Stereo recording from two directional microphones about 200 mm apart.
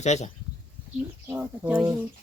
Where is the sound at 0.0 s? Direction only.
35° left (ahead or behind).